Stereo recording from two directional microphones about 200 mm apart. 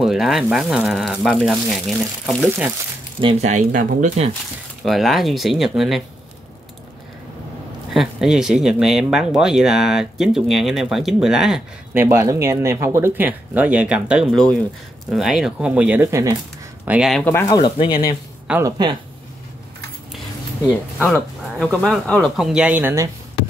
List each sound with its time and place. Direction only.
0.0 s speech: centre (ahead or behind)
3.2 s speech: 30° right (ahead or behind)
4.8 s speech: centre (ahead or behind)
7.9 s speech: centre (ahead or behind)
17.2 s speech: 15° left (ahead or behind)
17.6 s speech: 25° left (ahead or behind)
18.5 s speech: 15° right (ahead or behind)
20.6 s speech: 10° left (ahead or behind); by 23.0 s 10° right (ahead or behind)